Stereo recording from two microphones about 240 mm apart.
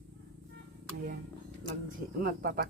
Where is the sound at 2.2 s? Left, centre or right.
Right.